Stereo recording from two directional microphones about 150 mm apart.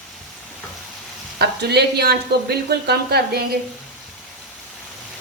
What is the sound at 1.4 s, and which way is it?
A woman's voice, 90° right.